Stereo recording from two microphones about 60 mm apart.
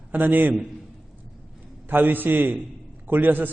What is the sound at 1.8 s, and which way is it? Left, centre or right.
A man's voice, right.